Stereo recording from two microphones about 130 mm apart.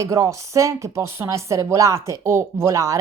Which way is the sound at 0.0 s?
25° right (ahead or behind).